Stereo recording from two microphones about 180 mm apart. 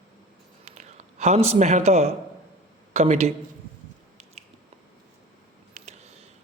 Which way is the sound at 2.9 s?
35° right (ahead or behind).